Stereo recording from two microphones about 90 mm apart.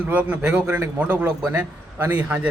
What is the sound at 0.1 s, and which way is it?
A man's voice, 20° right (ahead or behind).